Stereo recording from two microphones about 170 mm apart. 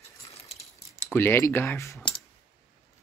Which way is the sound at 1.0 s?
10° left (ahead or behind).